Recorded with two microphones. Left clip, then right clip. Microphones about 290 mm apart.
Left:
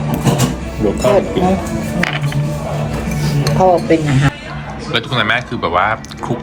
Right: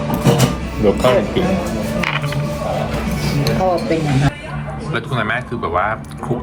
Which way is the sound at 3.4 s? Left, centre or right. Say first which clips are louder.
Left 6 dB; left.